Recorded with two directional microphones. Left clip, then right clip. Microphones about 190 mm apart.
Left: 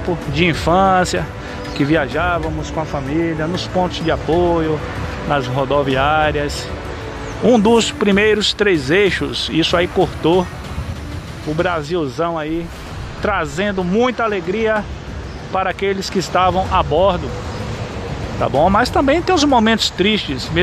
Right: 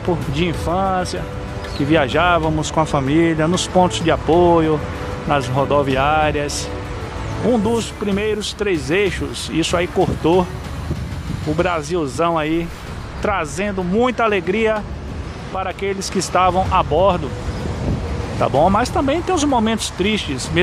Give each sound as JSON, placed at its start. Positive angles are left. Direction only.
{"t": 0.3, "sound": "speech", "side_deg": 5}
{"t": 1.9, "sound": "speech", "side_deg": -10}
{"t": 11.5, "sound": "speech", "side_deg": 0}
{"t": 13.2, "sound": "speech", "side_deg": 0}
{"t": 15.5, "sound": "speech", "side_deg": 10}
{"t": 18.4, "sound": "speech", "side_deg": -5}